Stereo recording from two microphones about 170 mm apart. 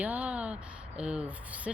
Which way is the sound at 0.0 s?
10° right (ahead or behind).